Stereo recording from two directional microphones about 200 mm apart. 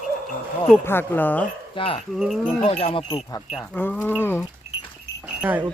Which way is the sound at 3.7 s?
10° left (ahead or behind).